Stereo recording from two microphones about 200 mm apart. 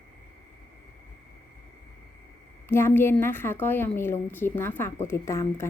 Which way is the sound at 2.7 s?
10° left (ahead or behind).